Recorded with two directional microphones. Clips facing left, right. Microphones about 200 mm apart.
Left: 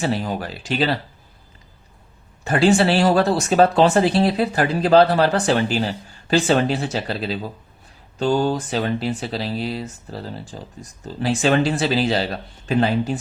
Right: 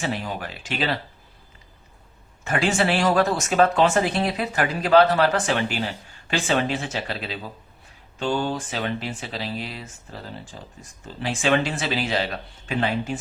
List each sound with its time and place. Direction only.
0.0 s speech: 35° left (ahead or behind)
2.4 s speech: 35° left (ahead or behind)